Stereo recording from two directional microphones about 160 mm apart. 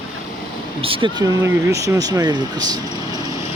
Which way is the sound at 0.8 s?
35° right (ahead or behind).